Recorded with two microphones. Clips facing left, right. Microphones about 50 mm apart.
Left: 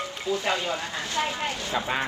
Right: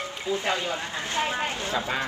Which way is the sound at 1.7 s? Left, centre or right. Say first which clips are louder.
Left 2 dB; left.